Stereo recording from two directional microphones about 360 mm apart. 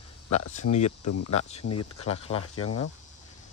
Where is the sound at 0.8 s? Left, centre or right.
Left.